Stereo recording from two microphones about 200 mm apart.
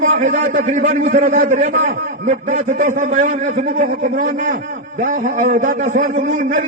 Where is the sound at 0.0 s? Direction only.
35° right (ahead or behind).